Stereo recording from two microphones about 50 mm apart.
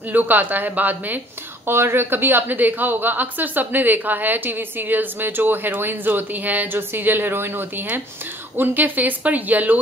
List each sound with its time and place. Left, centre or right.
0.1 s a woman's voice: right
1.7 s a woman's voice: right